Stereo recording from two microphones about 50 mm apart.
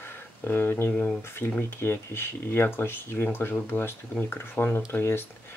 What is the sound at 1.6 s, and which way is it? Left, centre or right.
Speech, left.